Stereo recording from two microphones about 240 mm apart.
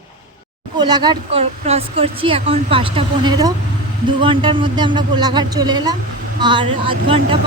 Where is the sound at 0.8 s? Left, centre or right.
Centre.